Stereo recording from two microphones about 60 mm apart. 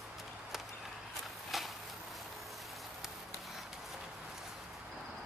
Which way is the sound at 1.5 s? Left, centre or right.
Centre.